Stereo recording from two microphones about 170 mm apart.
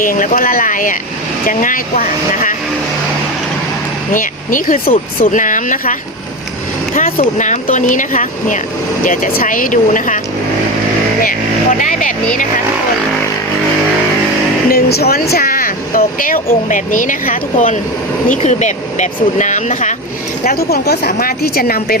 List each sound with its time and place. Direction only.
0.0 s speech: 55° left (ahead or behind)
4.1 s speech: 50° left (ahead or behind)
11.8 s speech: 50° left (ahead or behind)
14.7 s speech: 65° left (ahead or behind); by 20.0 s 45° left (ahead or behind)
20.5 s speech: 65° left (ahead or behind)
21.1 s speech: 60° left (ahead or behind)